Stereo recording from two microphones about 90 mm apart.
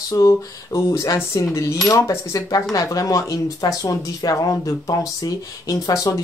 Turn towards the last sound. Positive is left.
turn(degrees=40)  # may be behind; listen again after turning